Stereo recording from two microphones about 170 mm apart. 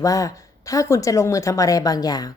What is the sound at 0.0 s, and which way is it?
Speech, 20° left (ahead or behind).